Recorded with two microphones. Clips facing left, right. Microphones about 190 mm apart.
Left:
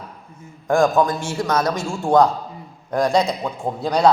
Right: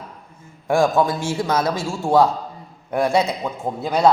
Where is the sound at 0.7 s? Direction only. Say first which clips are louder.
Left 1 dB; 10° right (ahead or behind).